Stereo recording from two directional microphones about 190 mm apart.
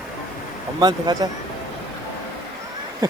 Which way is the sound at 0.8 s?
20° right (ahead or behind).